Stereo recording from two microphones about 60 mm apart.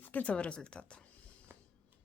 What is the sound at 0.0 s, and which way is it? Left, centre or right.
Speech, left.